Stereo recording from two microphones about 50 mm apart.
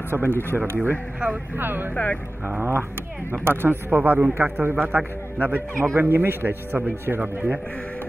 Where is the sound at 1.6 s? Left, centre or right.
Right.